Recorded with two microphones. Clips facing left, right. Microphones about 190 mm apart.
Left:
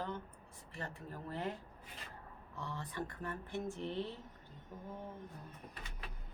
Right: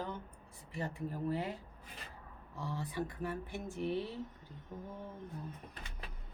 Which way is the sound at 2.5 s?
10° right (ahead or behind).